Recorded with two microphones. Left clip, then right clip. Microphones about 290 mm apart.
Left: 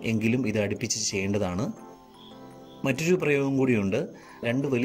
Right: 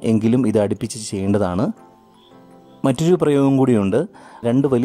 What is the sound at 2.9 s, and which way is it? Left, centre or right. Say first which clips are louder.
Speech: right 8 dB; right.